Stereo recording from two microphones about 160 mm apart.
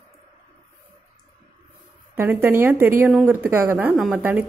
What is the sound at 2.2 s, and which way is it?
A woman's voice, 15° right (ahead or behind).